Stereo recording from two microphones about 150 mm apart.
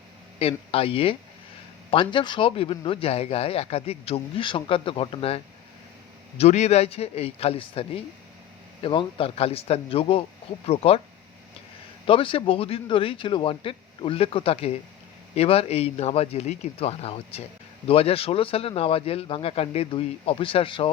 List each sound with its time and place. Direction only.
0.3 s speech: 40° left (ahead or behind)
12.0 s speech: 35° left (ahead or behind)